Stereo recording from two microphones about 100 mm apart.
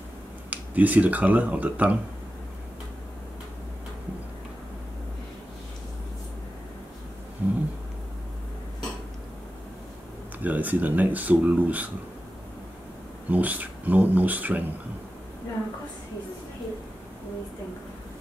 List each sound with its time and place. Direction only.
0.5 s speech: 15° right (ahead or behind)
7.4 s a sound: 15° right (ahead or behind)
10.4 s speech: 15° right (ahead or behind)
13.3 s speech: 15° right (ahead or behind)